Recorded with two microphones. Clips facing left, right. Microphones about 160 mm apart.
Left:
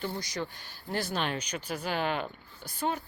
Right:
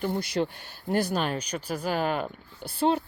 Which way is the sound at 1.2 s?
35° right (ahead or behind).